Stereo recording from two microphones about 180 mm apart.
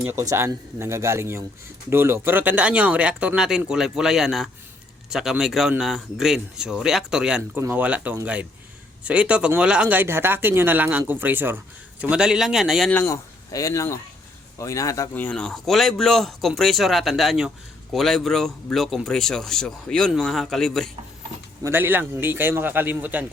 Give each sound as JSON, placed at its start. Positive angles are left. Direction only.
{"t": 0.0, "sound": "speech", "side_deg": -15}
{"t": 12.9, "sound": "speech", "side_deg": 15}
{"t": 21.6, "sound": "speech", "side_deg": -10}